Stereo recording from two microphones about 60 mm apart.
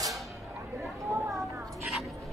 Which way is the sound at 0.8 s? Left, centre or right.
Right.